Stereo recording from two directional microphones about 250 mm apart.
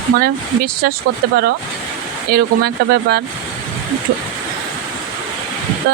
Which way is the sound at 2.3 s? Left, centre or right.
Right.